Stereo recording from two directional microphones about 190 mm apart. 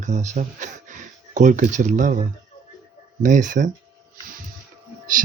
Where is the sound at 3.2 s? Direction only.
40° right (ahead or behind).